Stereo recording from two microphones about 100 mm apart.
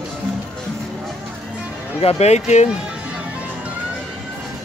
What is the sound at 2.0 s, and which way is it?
Speech, 90° left.